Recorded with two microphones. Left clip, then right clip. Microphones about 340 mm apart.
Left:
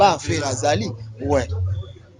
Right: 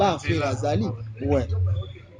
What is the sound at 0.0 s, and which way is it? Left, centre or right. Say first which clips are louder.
Speech: left 5 dB; left.